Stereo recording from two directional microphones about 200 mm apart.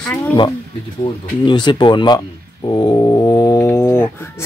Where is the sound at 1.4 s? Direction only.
25° left (ahead or behind).